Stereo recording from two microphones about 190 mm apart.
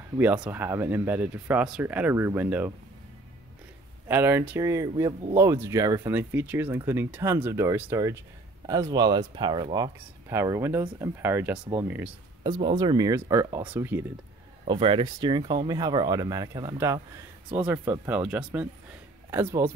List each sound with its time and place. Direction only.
0.2 s speech: 10° right (ahead or behind)
4.1 s speech: 10° right (ahead or behind)
9.9 s speech: 15° right (ahead or behind)
12.6 s speech: 20° right (ahead or behind)
14.6 s speech: 25° right (ahead or behind)